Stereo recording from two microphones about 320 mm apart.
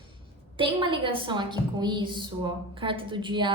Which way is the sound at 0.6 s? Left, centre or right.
Centre.